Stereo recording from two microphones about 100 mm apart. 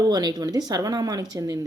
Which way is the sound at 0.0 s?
40° right (ahead or behind).